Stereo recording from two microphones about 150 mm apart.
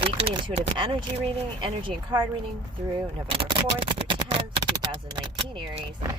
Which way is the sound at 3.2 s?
40° right (ahead or behind).